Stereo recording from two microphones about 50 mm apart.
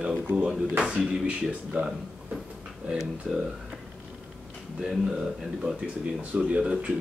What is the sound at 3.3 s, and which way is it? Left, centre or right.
Speech, centre.